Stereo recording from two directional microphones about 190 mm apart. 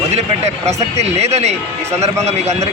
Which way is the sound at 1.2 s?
35° right (ahead or behind).